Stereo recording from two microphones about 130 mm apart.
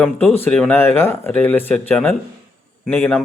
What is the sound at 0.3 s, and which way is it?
Speech, 15° left (ahead or behind).